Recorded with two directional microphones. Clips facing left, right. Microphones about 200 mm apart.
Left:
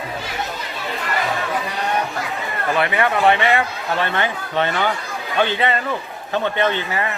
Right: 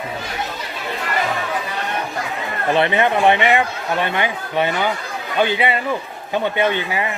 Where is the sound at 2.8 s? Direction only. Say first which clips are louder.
Right 2 dB; 25° right (ahead or behind).